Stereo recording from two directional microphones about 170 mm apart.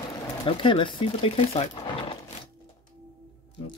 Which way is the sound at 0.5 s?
30° left (ahead or behind).